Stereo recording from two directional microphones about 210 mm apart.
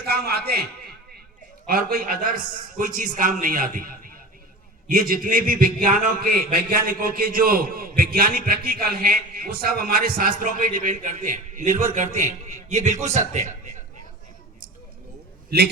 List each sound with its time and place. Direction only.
0.1 s a man's voice: 50° right (ahead or behind)
1.6 s a man's voice: 45° right (ahead or behind)
15.4 s a man's voice: 50° right (ahead or behind)